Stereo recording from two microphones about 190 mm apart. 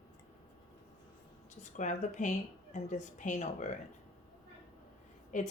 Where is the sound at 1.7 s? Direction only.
40° left (ahead or behind).